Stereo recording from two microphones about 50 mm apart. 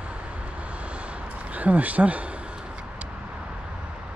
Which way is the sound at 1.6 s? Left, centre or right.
Right.